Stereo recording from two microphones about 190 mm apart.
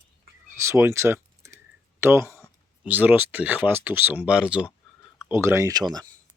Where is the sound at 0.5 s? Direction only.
15° right (ahead or behind).